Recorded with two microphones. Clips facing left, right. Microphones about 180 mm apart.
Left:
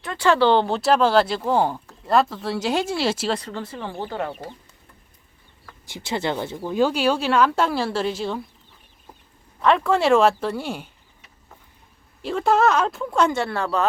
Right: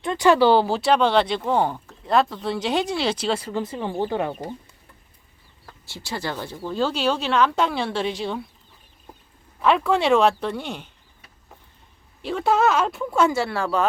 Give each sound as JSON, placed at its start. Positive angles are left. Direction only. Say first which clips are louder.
{"t": 0.0, "sound": "speech", "louder": "right 2 dB", "side_deg": -20}
{"t": 3.5, "sound": "speech", "louder": "right 4 dB", "side_deg": -15}
{"t": 5.8, "sound": "speech", "louder": "left 4 dB", "side_deg": 20}
{"t": 9.6, "sound": "speech", "louder": "left 1 dB", "side_deg": 0}
{"t": 12.2, "sound": "speech", "louder": "left 1 dB", "side_deg": 0}